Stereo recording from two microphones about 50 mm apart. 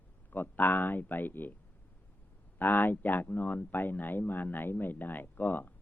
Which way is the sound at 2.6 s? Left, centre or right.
Left.